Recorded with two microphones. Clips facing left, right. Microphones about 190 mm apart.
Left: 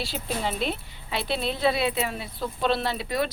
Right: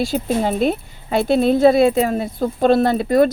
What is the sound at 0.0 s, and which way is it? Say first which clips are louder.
A woman's voice: right 11 dB; 45° right (ahead or behind).